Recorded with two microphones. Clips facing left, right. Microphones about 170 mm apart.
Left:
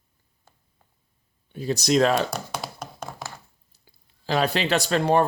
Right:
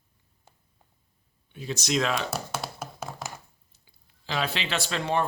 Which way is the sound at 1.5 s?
40° left (ahead or behind).